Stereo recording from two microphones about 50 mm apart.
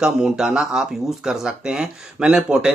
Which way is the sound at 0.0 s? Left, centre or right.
Centre.